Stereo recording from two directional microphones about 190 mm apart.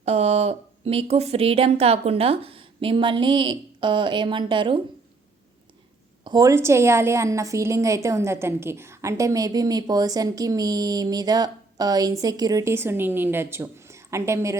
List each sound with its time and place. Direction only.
0.0 s a woman's voice: 35° right (ahead or behind)
6.2 s a woman's voice: 20° right (ahead or behind)